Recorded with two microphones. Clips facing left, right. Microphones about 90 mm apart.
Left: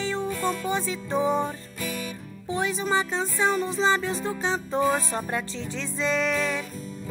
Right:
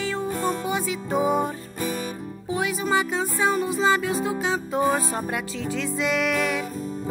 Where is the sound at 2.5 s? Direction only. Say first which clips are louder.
Right 2 dB; 10° right (ahead or behind).